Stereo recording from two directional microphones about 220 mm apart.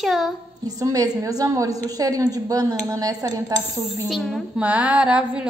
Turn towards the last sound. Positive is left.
turn(degrees=-5)  # may be behind; listen again after turning